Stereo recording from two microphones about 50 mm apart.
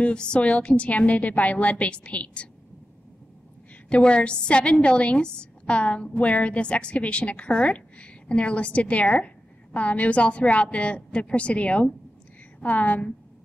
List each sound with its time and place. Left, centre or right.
0.0 s a woman's voice: left
3.9 s a woman's voice: left